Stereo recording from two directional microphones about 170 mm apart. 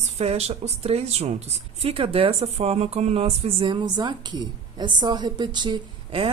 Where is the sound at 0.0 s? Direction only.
40° right (ahead or behind).